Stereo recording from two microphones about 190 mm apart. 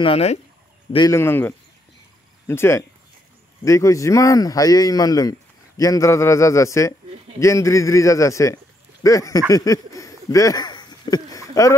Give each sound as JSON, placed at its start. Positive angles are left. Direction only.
{"t": 0.0, "sound": "speech", "side_deg": 30}
{"t": 0.9, "sound": "speech", "side_deg": 15}